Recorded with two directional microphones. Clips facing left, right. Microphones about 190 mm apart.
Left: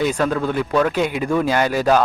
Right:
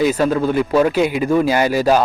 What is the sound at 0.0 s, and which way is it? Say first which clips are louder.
Speech: right 4 dB; 5° right (ahead or behind).